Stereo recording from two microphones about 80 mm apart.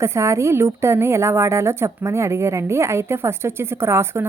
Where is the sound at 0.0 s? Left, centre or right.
Right.